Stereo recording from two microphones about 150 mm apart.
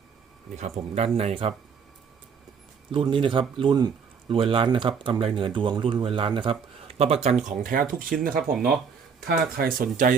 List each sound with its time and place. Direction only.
0.5 s speech: 50° right (ahead or behind)
2.9 s speech: 35° right (ahead or behind); by 8.5 s 70° right (ahead or behind)
9.2 s speech: 85° right; by 10.2 s 65° right (ahead or behind)